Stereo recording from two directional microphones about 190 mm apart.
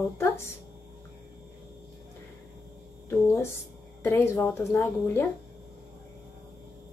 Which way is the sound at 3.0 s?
15° left (ahead or behind).